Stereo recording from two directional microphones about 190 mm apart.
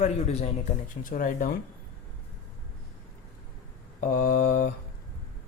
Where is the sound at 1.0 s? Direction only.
45° left (ahead or behind).